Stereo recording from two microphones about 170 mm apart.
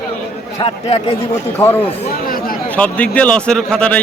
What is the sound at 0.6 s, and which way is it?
Speech, 35° left (ahead or behind).